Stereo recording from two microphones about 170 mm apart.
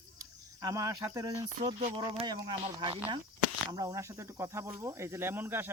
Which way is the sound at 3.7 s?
20° right (ahead or behind).